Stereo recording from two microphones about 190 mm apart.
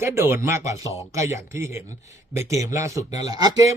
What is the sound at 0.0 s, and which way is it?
A man's voice, 10° right (ahead or behind).